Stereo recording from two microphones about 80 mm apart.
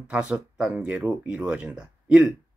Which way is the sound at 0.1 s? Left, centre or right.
Centre.